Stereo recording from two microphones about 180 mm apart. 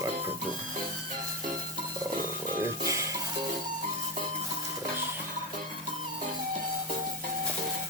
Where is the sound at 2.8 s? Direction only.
15° right (ahead or behind).